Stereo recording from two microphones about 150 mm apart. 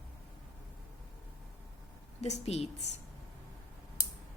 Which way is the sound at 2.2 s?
45° left (ahead or behind).